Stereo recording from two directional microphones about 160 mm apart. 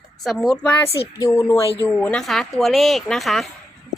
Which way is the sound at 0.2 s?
Centre (ahead or behind).